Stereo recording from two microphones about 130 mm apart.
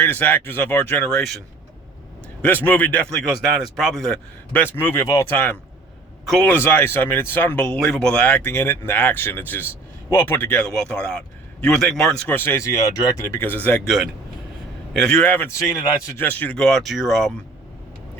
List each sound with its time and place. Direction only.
0.0 s speech: 15° left (ahead or behind)
2.4 s speech: 15° left (ahead or behind)
3.2 s speech: centre (ahead or behind)
4.5 s speech: 15° left (ahead or behind)
6.2 s a man's voice: 5° left (ahead or behind)
6.5 s speech: 15° left (ahead or behind)
12.3 s speech: 15° left (ahead or behind)
13.8 s speech: centre (ahead or behind)